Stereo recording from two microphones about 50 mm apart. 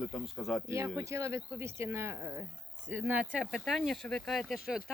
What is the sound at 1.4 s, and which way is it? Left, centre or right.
Speech, right.